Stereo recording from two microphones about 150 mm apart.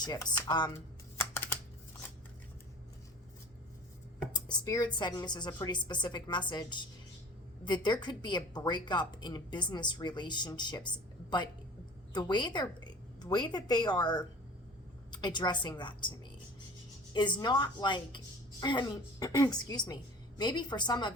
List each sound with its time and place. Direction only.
0.0 s a woman's voice: 25° left (ahead or behind)
1.2 s typing: 15° left (ahead or behind)
4.3 s a woman's voice: 25° left (ahead or behind)
17.2 s a woman's voice: 30° left (ahead or behind)